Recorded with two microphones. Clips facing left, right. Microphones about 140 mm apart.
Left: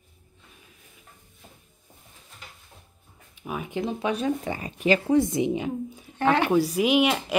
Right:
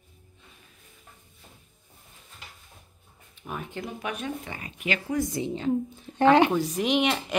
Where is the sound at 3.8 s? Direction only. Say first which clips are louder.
Left 9 dB; 25° left (ahead or behind).